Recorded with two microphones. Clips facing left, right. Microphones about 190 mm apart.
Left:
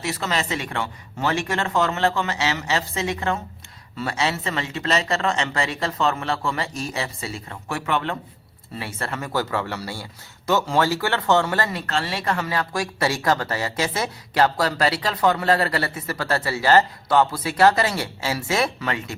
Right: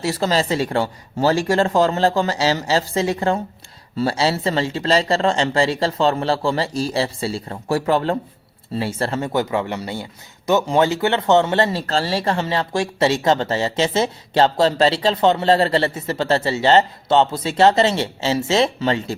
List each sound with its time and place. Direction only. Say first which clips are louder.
0.0 s speech: right 6 dB; 35° right (ahead or behind)